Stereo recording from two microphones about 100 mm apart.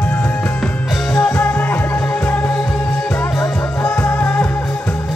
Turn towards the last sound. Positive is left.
turn(degrees=15)  # may be behind; listen again after turning